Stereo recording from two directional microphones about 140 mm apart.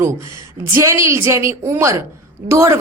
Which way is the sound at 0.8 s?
20° right (ahead or behind).